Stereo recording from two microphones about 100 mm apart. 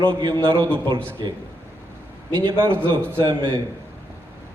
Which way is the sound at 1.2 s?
50° right (ahead or behind).